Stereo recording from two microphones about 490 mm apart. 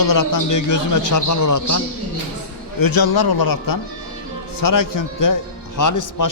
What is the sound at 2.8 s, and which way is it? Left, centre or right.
A man's voice, left.